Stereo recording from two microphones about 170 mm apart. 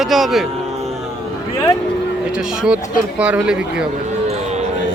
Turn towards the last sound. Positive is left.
turn(degrees=-5)  # may be behind; listen again after turning